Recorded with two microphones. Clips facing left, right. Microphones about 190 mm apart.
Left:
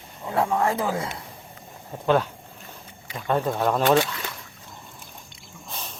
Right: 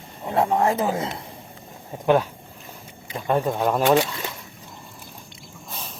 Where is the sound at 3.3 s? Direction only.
10° right (ahead or behind).